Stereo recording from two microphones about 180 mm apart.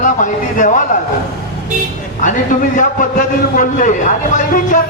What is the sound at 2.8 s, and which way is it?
A man's voice, 45° left (ahead or behind).